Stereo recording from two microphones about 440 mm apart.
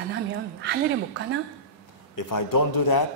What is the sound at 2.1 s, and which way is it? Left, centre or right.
Speech, left.